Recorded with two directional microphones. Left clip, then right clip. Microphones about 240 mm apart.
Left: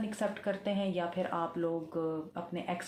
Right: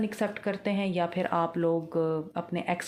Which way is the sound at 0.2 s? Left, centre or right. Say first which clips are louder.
Right 2 dB; right.